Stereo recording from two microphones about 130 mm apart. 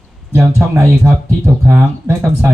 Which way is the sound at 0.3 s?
15° right (ahead or behind).